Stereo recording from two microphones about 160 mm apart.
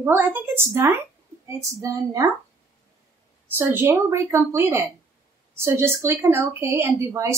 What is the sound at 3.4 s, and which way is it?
Speech, 15° right (ahead or behind).